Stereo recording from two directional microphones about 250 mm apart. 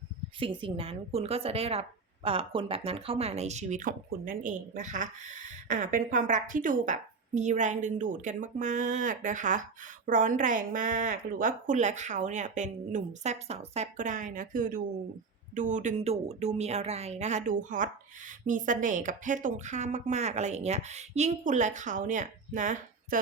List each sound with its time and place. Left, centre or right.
0.3 s a woman's voice: centre